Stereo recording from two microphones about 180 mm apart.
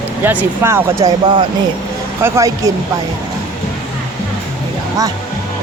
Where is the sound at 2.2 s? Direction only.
15° right (ahead or behind).